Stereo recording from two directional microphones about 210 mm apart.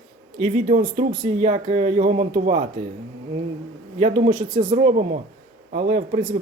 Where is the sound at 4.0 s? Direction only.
30° right (ahead or behind).